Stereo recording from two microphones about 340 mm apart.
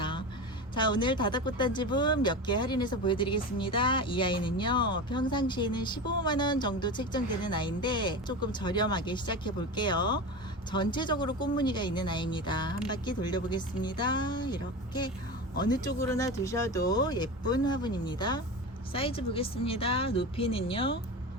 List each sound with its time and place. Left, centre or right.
0.7 s speech: centre